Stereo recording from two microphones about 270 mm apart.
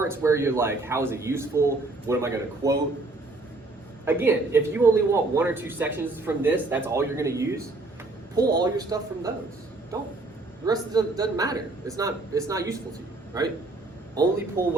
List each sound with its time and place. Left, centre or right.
0.0 s a man's voice: centre
4.0 s a man's voice: centre
10.7 s a man's voice: centre
14.6 s speech: right